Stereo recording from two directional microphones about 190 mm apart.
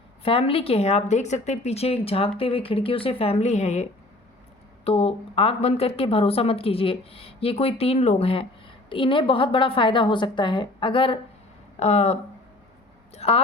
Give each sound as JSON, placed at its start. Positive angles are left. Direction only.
{"t": 0.2, "sound": "a woman's voice", "side_deg": 30}
{"t": 4.9, "sound": "a woman's voice", "side_deg": 30}